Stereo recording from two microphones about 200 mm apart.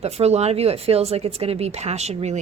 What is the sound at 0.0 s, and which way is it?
A woman's voice, 30° right (ahead or behind).